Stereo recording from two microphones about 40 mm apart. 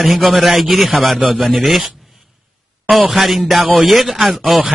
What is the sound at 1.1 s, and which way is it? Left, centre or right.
Speech, right.